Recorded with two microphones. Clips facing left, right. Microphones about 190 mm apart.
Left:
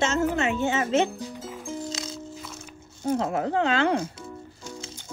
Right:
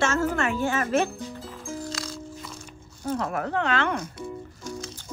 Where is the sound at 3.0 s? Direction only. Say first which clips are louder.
Left 3 dB; 25° left (ahead or behind).